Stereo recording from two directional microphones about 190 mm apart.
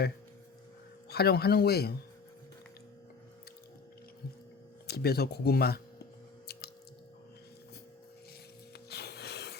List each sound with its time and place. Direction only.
1.1 s speech: 55° left (ahead or behind)
4.9 s speech: 55° left (ahead or behind)
8.9 s music: 60° left (ahead or behind)